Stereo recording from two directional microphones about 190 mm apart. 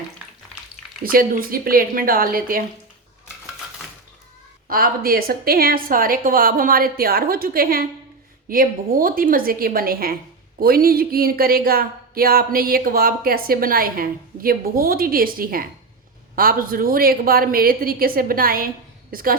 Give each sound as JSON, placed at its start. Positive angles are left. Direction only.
{"t": 1.0, "sound": "speech", "side_deg": -50}
{"t": 4.7, "sound": "speech", "side_deg": -50}